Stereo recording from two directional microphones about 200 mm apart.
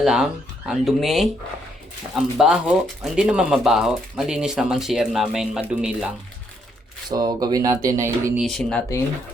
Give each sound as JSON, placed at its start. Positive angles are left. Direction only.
{"t": 0.0, "sound": "speech", "side_deg": -5}
{"t": 7.1, "sound": "speech", "side_deg": -20}
{"t": 8.4, "sound": "speech", "side_deg": 0}